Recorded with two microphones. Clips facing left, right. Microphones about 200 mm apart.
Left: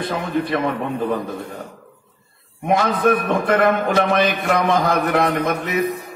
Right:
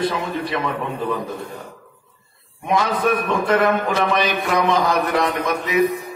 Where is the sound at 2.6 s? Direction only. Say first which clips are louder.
Left 2 dB; 50° left (ahead or behind).